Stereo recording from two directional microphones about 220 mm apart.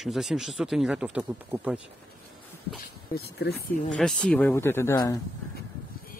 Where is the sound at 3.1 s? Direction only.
45° left (ahead or behind).